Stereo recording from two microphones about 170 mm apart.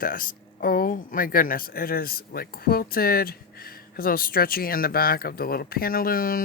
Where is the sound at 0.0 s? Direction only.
55° left (ahead or behind).